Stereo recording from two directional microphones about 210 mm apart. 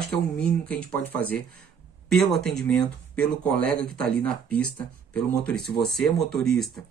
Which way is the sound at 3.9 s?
5° left (ahead or behind).